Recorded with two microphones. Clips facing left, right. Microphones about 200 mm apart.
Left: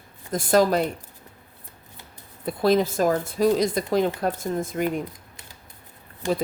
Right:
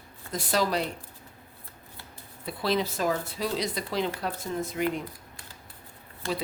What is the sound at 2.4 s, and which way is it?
Speech, 50° left (ahead or behind).